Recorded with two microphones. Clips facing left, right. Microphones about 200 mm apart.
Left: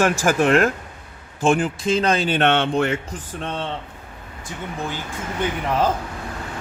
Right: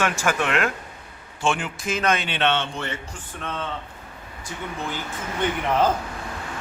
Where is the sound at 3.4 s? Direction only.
30° left (ahead or behind).